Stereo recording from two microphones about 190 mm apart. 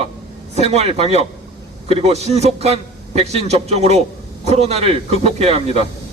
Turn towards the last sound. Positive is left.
turn(degrees=-35)  # may be behind; listen again after turning